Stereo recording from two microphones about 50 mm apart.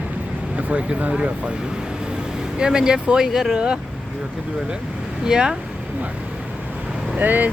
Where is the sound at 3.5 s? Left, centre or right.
Centre.